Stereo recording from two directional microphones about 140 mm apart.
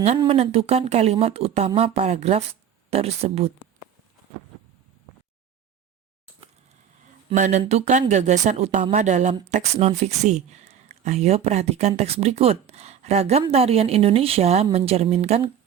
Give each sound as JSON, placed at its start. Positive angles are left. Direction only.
{"t": 0.2, "sound": "speech", "side_deg": -40}
{"t": 7.3, "sound": "speech", "side_deg": -60}